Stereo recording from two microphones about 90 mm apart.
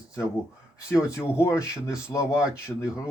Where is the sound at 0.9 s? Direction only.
30° left (ahead or behind).